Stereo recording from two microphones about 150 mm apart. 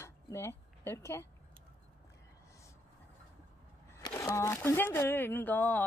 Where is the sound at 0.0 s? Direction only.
20° left (ahead or behind).